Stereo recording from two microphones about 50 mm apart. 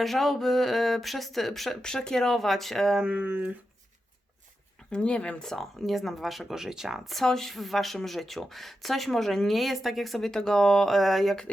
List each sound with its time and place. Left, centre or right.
0.0 s speech: centre
3.2 s a sound: right
4.9 s speech: left
5.4 s speech: centre